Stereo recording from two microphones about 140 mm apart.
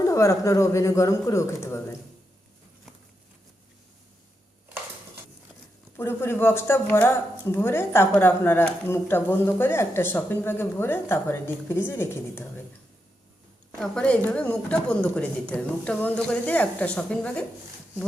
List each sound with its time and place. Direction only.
0.0 s a woman's voice: 20° left (ahead or behind)
6.0 s speech: 15° left (ahead or behind)
13.7 s speech: 5° left (ahead or behind)